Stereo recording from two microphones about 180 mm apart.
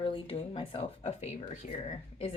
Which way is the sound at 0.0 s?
30° left (ahead or behind).